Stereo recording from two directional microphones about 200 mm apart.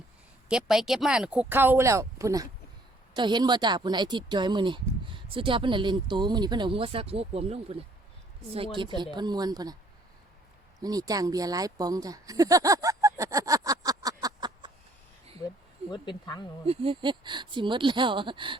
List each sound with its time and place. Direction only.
0.4 s speech: 5° right (ahead or behind); by 9.7 s 20° right (ahead or behind)
10.8 s speech: 20° right (ahead or behind)
15.9 s speech: 20° left (ahead or behind)
16.6 s speech: 25° right (ahead or behind)